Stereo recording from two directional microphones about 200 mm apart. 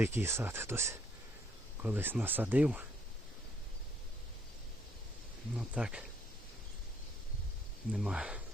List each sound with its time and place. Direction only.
0.0 s speech: 10° right (ahead or behind)
5.5 s speech: 5° right (ahead or behind)
7.9 s speech: 5° right (ahead or behind)